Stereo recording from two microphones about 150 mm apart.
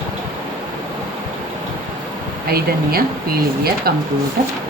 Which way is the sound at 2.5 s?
90° right.